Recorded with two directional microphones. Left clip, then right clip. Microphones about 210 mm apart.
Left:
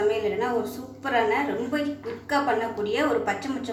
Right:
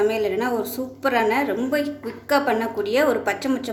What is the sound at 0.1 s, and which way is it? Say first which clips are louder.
A woman's voice: right 3 dB; 55° right (ahead or behind).